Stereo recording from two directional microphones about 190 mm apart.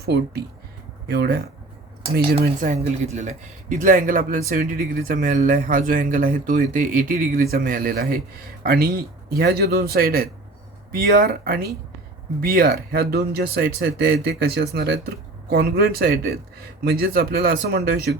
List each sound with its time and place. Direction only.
0.0 s speech: 55° right (ahead or behind)